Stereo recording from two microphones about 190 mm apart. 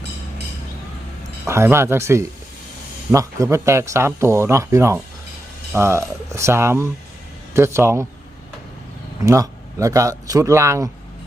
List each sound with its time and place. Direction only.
1.5 s speech: 15° right (ahead or behind)
9.2 s speech: 15° right (ahead or behind)